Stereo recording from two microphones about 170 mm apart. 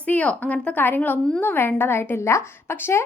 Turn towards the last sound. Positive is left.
turn(degrees=15)  # may be behind; listen again after turning